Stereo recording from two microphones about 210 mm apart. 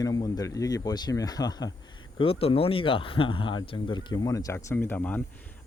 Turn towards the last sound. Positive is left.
turn(degrees=10)  # may be behind; listen again after turning